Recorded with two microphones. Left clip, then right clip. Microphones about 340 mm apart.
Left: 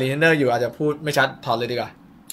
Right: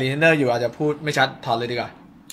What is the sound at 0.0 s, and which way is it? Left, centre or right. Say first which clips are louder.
Speech: even; centre.